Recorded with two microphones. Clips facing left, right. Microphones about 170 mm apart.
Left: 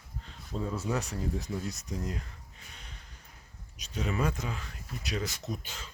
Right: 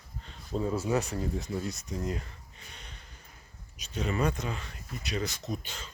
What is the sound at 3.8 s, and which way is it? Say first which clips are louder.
Speech: right 2 dB; centre (ahead or behind).